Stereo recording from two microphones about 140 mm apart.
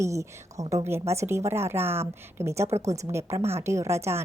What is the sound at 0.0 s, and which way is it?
A woman's voice, 20° right (ahead or behind).